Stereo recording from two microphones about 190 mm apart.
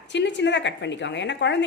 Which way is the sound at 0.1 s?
70° left (ahead or behind).